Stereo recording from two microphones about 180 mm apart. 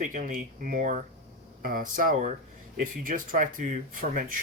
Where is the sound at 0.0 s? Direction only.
45° right (ahead or behind).